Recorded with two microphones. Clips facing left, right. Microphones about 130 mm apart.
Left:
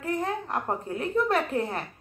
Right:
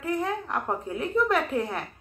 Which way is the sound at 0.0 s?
40° left (ahead or behind).